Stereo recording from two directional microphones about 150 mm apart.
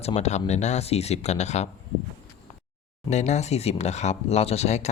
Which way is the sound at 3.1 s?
50° left (ahead or behind).